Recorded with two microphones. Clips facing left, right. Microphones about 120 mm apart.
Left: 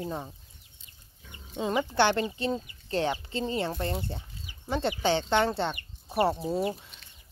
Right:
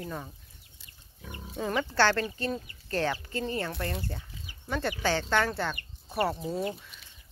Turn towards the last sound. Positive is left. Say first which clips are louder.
# left 3 dB
turn(degrees=25)  # may be behind; listen again after turning